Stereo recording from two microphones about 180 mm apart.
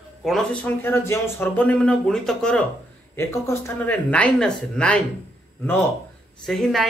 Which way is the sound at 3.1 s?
15° left (ahead or behind).